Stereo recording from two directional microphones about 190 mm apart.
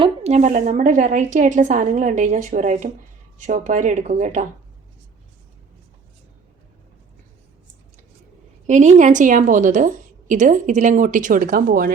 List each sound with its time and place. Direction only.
0.0 s a woman's voice: 35° right (ahead or behind)
8.6 s a woman's voice: 40° right (ahead or behind)